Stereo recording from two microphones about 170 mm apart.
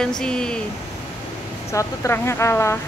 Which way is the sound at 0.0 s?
5° left (ahead or behind).